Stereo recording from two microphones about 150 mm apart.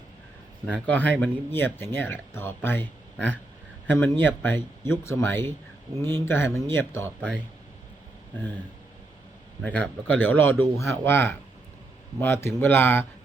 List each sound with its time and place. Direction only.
0.9 s speech: 10° left (ahead or behind)
9.6 s speech: 10° left (ahead or behind)